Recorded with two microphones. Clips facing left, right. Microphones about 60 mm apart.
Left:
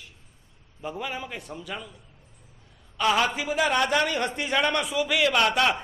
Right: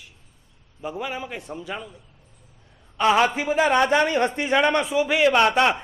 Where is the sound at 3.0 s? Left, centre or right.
Right.